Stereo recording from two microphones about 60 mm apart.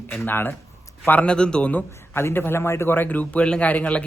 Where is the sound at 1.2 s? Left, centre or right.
Centre.